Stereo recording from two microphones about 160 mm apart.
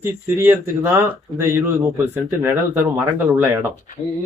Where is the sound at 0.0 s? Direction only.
15° right (ahead or behind).